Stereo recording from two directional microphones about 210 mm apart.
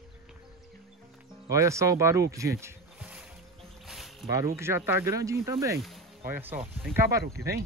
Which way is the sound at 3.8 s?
Centre (ahead or behind).